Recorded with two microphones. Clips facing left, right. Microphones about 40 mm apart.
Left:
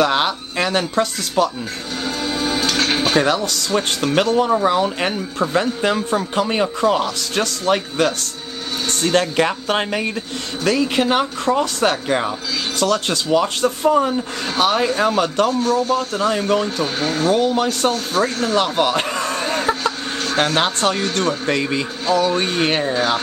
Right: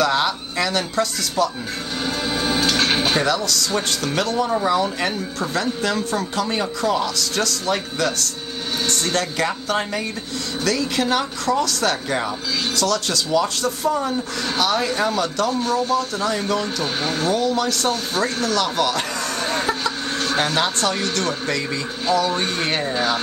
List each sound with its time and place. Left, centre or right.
0.0 s speech: left
2.0 s music: centre
3.3 s speech: left
5.4 s speech: left
15.6 s speech: centre
15.9 s speech: left
16.8 s speech: centre
17.3 s speech: left
19.6 s a sound: centre
20.5 s speech: left